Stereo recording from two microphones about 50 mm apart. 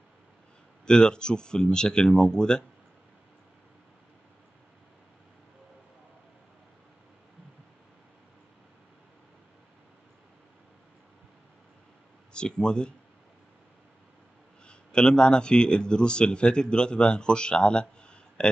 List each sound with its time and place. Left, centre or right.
0.8 s speech: centre
12.3 s speech: centre
14.7 s a man's voice: centre